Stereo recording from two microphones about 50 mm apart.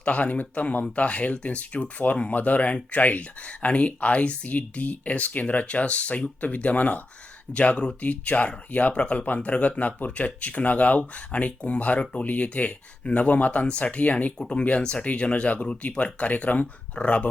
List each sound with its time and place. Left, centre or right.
0.0 s speech: left
14.3 s speech: centre